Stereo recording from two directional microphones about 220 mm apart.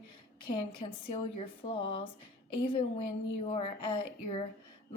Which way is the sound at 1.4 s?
25° left (ahead or behind).